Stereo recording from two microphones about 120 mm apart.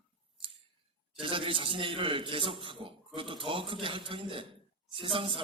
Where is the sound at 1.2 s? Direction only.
45° right (ahead or behind).